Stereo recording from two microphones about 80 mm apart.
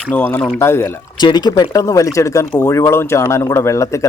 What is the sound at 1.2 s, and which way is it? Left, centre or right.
Speech, left.